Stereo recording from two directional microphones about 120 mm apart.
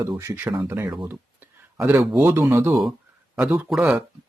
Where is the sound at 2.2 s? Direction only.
20° right (ahead or behind).